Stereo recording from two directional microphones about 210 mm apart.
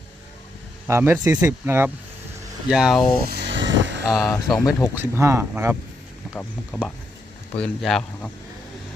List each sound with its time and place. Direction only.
0.9 s speech: 10° right (ahead or behind)
3.2 s a sound: 55° right (ahead or behind)
4.1 s speech: centre (ahead or behind)
4.9 s speech: 10° right (ahead or behind)
6.3 s speech: 5° left (ahead or behind)